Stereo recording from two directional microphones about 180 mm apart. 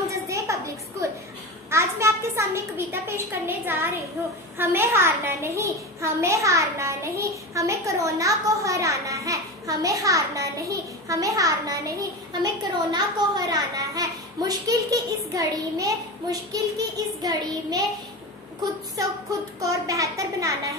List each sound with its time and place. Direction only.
0.1 s a sound: 15° right (ahead or behind)
1.7 s a child's voice: 15° right (ahead or behind)
19.6 s a child's voice: 20° right (ahead or behind)